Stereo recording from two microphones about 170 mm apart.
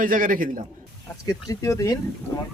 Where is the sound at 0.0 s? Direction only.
55° right (ahead or behind).